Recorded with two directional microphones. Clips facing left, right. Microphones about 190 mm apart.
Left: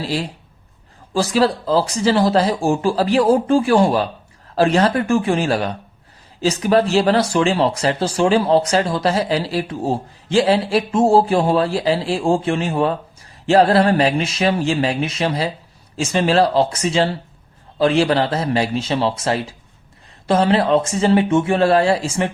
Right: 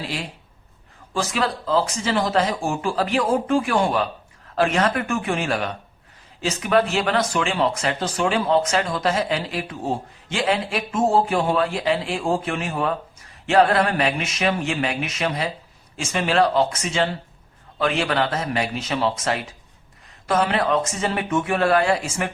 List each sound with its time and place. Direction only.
0.0 s speech: 35° left (ahead or behind)